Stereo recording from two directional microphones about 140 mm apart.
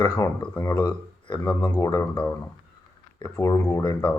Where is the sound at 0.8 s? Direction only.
35° left (ahead or behind); by 3.8 s 15° left (ahead or behind).